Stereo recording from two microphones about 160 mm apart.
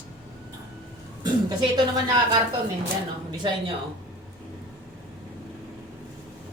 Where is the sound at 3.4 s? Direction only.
35° right (ahead or behind).